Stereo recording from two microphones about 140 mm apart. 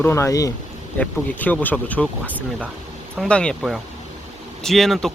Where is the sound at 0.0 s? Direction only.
20° left (ahead or behind).